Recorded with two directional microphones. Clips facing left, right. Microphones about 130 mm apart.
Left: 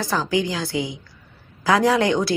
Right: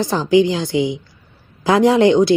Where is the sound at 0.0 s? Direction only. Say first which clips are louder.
Right 8 dB; 20° right (ahead or behind).